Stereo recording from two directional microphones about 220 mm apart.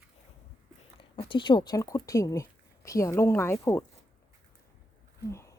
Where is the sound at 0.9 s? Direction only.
25° left (ahead or behind).